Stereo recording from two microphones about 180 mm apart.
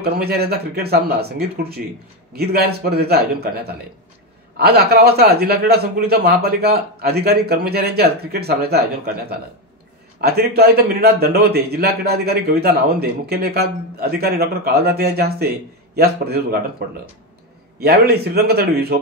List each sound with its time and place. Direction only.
0.0 s a man's voice: 60° right (ahead or behind)